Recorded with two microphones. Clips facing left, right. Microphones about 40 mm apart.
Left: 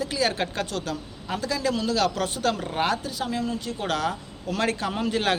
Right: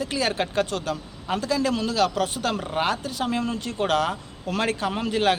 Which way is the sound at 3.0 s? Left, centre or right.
Right.